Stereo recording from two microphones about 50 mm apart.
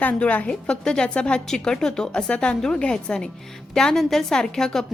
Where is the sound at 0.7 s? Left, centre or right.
Centre.